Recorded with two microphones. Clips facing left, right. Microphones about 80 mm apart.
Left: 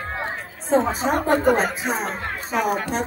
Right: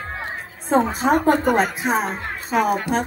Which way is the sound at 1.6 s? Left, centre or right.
Right.